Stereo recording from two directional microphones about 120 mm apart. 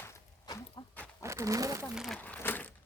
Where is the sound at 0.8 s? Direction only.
40° left (ahead or behind).